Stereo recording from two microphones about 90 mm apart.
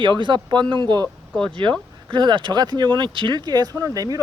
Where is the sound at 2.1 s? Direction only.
65° right (ahead or behind).